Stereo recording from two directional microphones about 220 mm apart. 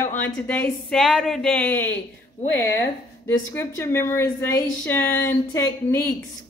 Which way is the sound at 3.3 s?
15° left (ahead or behind).